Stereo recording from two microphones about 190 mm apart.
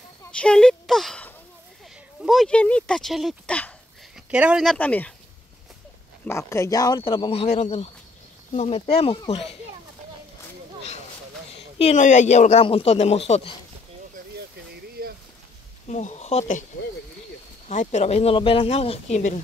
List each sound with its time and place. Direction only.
0.2 s speech: 5° left (ahead or behind)
4.3 s speech: 5° right (ahead or behind)
4.7 s speech: 10° left (ahead or behind)
6.2 s speech: 15° left (ahead or behind); by 9.6 s 30° left (ahead or behind)
11.8 s speech: 40° left (ahead or behind)
15.9 s speech: 40° left (ahead or behind)
17.6 s speech: 35° left (ahead or behind)